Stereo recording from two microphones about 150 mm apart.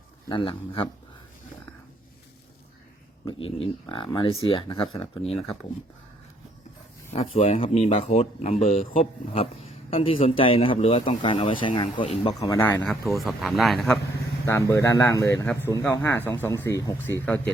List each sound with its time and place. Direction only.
0.3 s speech: 35° left (ahead or behind)
3.2 s speech: 35° left (ahead or behind)
7.1 s speech: 40° left (ahead or behind)
8.8 s speech: 65° left (ahead or behind)
9.9 s speech: 35° left (ahead or behind)
12.3 s speech: 20° left (ahead or behind)
13.1 s speech: centre (ahead or behind)
14.4 s speech: 20° left (ahead or behind)